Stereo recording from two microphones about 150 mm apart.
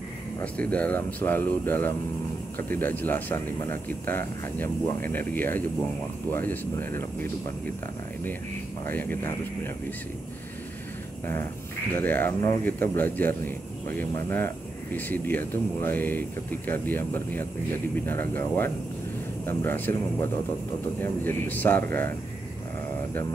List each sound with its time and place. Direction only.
0.4 s speech: 10° left (ahead or behind)
8.8 s speech: 15° left (ahead or behind)
12.0 s speech: 10° left (ahead or behind)